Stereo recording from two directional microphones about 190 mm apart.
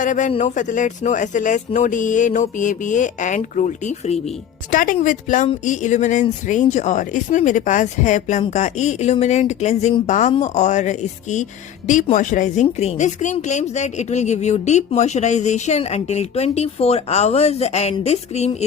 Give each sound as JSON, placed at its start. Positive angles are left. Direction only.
{"t": 0.0, "sound": "speech", "side_deg": 40}